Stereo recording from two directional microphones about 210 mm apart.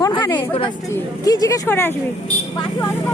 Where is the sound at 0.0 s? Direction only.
20° left (ahead or behind).